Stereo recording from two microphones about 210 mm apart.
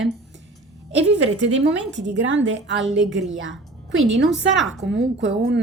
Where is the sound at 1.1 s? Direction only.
60° right (ahead or behind).